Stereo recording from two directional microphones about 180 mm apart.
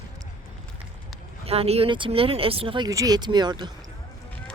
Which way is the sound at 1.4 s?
35° right (ahead or behind).